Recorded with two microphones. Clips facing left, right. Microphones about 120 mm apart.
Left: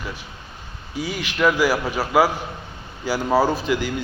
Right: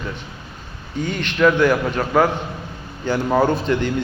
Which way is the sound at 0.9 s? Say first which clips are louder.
Right 3 dB; 5° left (ahead or behind).